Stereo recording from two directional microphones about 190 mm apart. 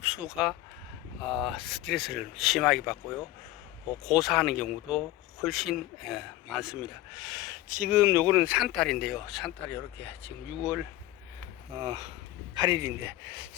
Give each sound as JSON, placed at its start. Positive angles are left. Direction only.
{"t": 0.0, "sound": "speech", "side_deg": -5}
{"t": 4.0, "sound": "speech", "side_deg": 0}
{"t": 9.6, "sound": "speech", "side_deg": 10}
{"t": 10.6, "sound": "speech", "side_deg": -5}
{"t": 11.7, "sound": "speech", "side_deg": -25}